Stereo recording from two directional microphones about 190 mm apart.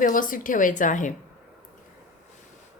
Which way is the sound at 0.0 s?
45° left (ahead or behind).